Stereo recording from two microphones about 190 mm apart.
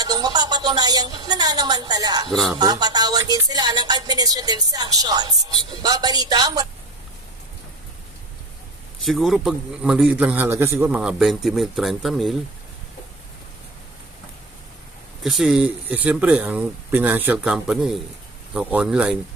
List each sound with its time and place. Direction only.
0.0 s a woman's voice: 20° right (ahead or behind)
9.0 s a man's voice: centre (ahead or behind)
15.2 s a man's voice: centre (ahead or behind)